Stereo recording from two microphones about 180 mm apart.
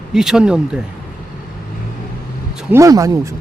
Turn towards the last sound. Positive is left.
turn(degrees=-20)  # may be behind; listen again after turning